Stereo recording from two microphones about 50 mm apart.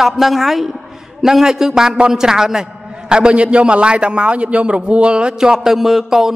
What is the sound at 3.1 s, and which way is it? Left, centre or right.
A man's voice, right.